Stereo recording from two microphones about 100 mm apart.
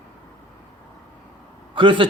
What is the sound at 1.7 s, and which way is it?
Speech, 60° right (ahead or behind).